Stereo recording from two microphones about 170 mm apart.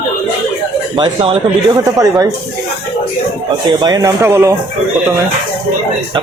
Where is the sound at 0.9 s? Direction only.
30° right (ahead or behind).